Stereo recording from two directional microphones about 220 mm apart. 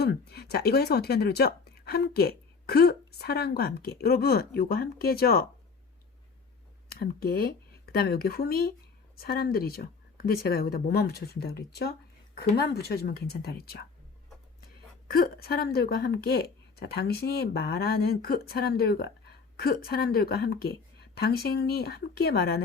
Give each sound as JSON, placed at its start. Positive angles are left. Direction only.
{"t": 0.0, "sound": "a woman's voice", "side_deg": 45}
{"t": 6.8, "sound": "a woman's voice", "side_deg": 45}
{"t": 15.1, "sound": "a woman's voice", "side_deg": 45}